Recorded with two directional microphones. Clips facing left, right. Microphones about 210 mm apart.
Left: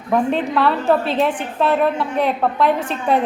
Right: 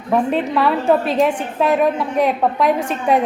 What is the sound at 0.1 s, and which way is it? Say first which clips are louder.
A woman's voice: right 1 dB; 5° right (ahead or behind).